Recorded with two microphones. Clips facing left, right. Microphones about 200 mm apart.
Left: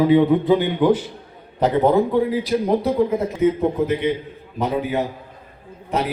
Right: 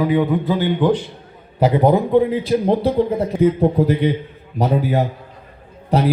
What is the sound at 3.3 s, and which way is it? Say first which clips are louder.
A man's voice: right 4 dB; 35° right (ahead or behind).